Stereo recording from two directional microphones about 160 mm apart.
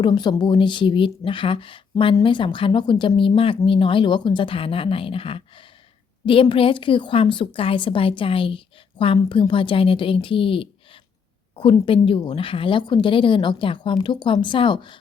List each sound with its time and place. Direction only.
0.0 s speech: 30° left (ahead or behind)